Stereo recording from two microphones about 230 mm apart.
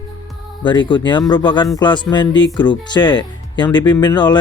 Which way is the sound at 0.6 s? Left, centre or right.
Centre.